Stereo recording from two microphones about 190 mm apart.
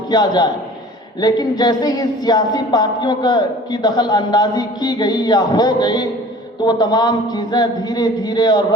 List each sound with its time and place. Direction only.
0.1 s speech: 20° left (ahead or behind)